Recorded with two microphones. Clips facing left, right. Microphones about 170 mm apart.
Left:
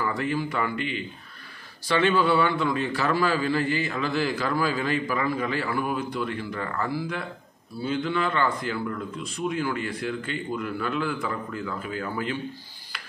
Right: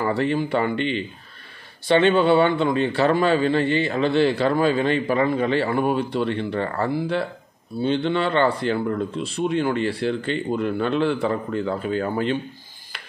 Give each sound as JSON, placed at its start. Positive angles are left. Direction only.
{"t": 0.0, "sound": "a man's voice", "side_deg": -30}